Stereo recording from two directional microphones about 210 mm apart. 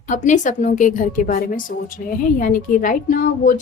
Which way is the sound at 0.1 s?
35° left (ahead or behind).